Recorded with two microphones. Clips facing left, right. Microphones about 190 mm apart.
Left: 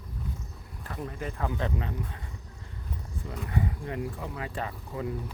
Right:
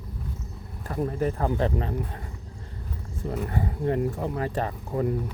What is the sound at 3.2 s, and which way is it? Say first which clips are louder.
Speech: right 3 dB; 40° right (ahead or behind).